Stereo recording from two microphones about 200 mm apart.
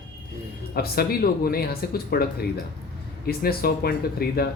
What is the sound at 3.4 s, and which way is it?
Speech, 50° left (ahead or behind).